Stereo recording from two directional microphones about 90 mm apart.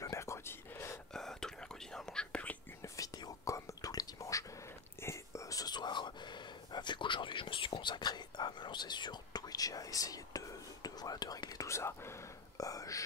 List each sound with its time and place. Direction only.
0.0 s whispering: 35° left (ahead or behind)
1.1 s whispering: 5° left (ahead or behind)
3.2 s whispering: 40° left (ahead or behind)